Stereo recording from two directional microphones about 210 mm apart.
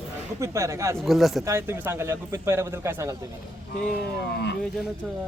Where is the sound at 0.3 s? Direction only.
15° right (ahead or behind).